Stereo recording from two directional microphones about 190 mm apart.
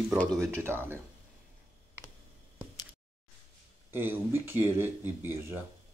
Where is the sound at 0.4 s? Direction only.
10° right (ahead or behind).